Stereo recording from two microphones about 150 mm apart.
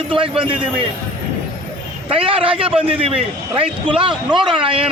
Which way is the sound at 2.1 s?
40° right (ahead or behind).